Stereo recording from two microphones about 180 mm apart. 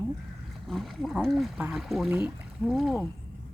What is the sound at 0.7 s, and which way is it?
Speech, centre (ahead or behind).